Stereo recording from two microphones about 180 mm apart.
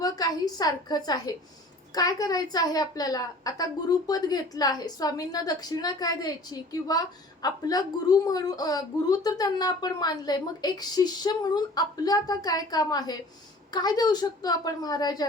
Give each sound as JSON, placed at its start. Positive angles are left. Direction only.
{"t": 0.0, "sound": "a woman's voice", "side_deg": 20}